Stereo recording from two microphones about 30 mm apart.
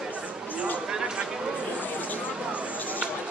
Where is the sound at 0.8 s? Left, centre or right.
Right.